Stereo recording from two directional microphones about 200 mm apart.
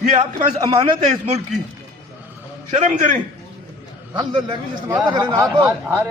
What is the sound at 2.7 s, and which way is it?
Speech, 40° right (ahead or behind).